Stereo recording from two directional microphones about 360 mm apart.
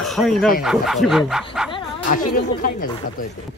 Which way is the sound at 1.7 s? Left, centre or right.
Centre.